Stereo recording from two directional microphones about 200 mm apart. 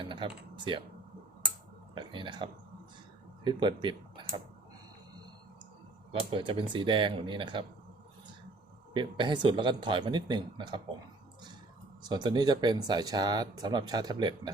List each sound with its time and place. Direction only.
0.0 s speech: 25° right (ahead or behind)
2.0 s speech: 25° right (ahead or behind)
6.1 s speech: 25° right (ahead or behind)
8.9 s speech: 25° right (ahead or behind)
12.0 s speech: 20° right (ahead or behind)